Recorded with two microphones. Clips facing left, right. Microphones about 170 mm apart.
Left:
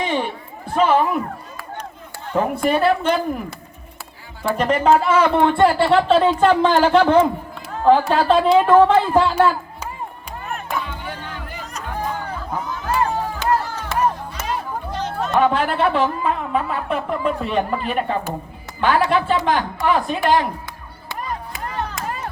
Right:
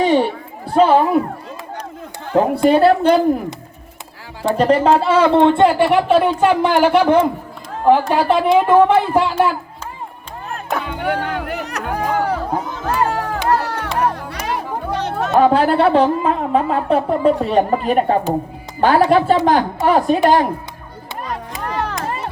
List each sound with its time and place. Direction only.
0.0 s a sound: 35° right (ahead or behind)
2.3 s speech: 30° right (ahead or behind)
4.5 s speech: 35° right (ahead or behind); by 9.3 s 15° right (ahead or behind)
10.7 s music: 65° right (ahead or behind)
15.4 s a woman's voice: 35° right (ahead or behind)
21.6 s crowd: 75° right (ahead or behind)